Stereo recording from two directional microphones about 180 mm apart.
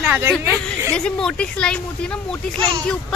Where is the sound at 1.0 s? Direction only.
5° left (ahead or behind).